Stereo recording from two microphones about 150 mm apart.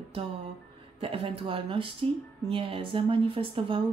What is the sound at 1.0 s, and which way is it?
A woman's voice, 40° right (ahead or behind).